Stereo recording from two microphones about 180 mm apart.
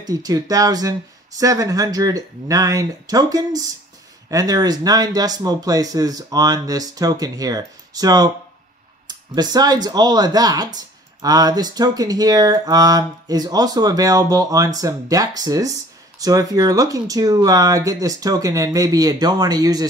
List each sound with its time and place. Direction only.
0.0 s speech: 20° right (ahead or behind)